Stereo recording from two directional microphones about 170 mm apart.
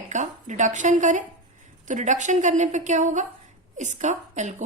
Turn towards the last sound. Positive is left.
turn(degrees=-45)  # may be behind; listen again after turning